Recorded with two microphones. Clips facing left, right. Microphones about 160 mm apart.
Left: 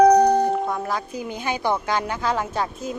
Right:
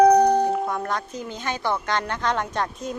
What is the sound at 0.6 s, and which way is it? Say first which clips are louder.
A woman's voice: left 1 dB; 5° left (ahead or behind).